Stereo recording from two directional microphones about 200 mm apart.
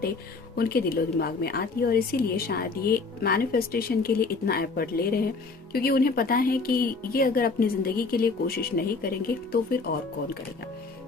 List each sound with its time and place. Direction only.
0.5 s a woman's voice: 50° left (ahead or behind)